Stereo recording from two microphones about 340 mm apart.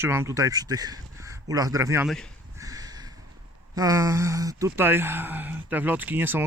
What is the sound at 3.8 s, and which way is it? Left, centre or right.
Speech, centre.